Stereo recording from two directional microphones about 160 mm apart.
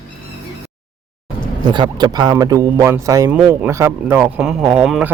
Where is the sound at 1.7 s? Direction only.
25° right (ahead or behind); by 5.1 s 5° right (ahead or behind).